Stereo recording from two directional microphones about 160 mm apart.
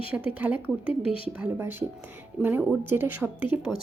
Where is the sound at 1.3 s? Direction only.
10° right (ahead or behind).